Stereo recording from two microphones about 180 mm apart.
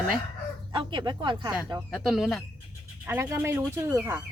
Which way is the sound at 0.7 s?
25° right (ahead or behind).